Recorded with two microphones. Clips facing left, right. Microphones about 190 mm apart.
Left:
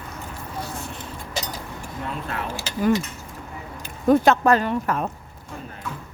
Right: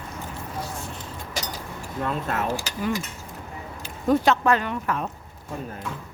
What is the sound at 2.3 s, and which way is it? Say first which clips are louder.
Speech: right 4 dB; 45° right (ahead or behind).